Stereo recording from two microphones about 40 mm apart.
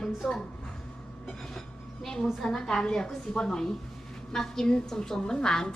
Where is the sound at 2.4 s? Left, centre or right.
Centre.